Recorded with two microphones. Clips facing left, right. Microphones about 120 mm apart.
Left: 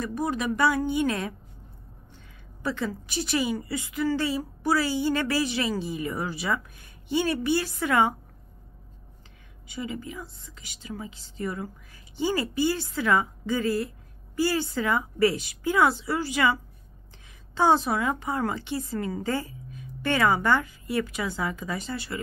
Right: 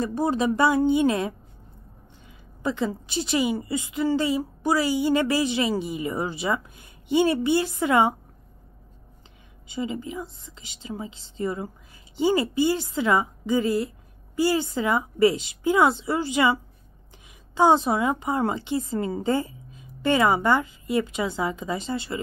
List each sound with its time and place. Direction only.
0.0 s a woman's voice: 30° right (ahead or behind)
2.6 s a woman's voice: 20° right (ahead or behind)
9.7 s a woman's voice: 25° right (ahead or behind)
17.6 s a woman's voice: 20° right (ahead or behind)